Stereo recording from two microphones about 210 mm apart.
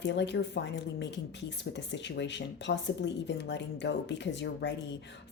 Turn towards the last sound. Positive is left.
turn(degrees=55)  # may be behind; listen again after turning